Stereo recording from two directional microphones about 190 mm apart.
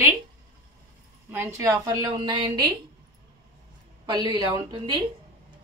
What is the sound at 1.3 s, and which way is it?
A woman's voice, 15° right (ahead or behind).